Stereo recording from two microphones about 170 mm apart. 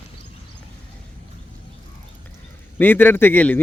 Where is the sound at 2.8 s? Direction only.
10° left (ahead or behind).